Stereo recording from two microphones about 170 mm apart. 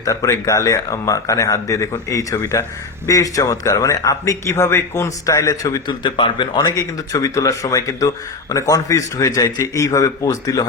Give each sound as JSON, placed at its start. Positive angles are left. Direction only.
{"t": 0.0, "sound": "a man's voice", "side_deg": 20}